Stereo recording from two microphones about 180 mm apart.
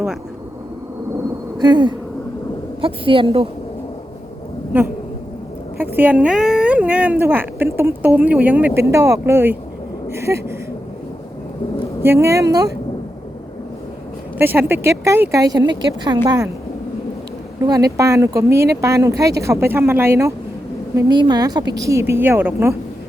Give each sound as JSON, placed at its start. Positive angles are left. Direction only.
{"t": 1.5, "sound": "a woman's voice", "side_deg": -25}
{"t": 5.7, "sound": "speech", "side_deg": -10}
{"t": 12.0, "sound": "speech", "side_deg": -15}
{"t": 14.3, "sound": "a woman's voice", "side_deg": -10}
{"t": 17.7, "sound": "speech", "side_deg": -20}